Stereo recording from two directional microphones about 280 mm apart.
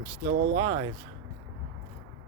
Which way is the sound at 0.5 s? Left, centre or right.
Centre.